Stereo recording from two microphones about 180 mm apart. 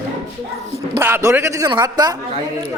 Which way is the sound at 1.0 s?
15° right (ahead or behind).